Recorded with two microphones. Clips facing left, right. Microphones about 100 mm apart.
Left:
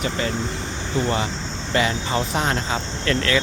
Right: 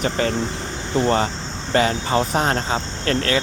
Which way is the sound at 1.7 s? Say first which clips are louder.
Right 3 dB; 40° right (ahead or behind).